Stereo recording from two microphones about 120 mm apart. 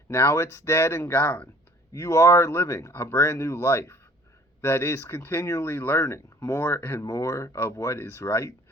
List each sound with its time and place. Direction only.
0.1 s speech: 20° left (ahead or behind)
1.9 s speech: 25° left (ahead or behind)